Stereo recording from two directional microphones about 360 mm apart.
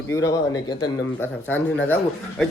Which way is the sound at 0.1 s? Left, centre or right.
Centre.